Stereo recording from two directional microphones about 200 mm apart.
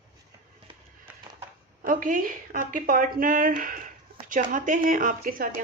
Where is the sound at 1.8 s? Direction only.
45° right (ahead or behind).